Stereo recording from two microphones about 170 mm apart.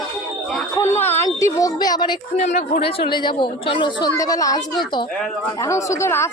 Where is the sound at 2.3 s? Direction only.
40° left (ahead or behind).